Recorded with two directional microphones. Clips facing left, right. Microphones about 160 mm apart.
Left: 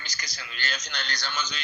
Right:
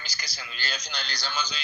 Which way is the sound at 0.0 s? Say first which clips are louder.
Even; 30° right (ahead or behind).